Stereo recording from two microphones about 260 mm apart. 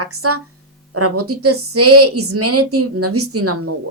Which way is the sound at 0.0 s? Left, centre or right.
Right.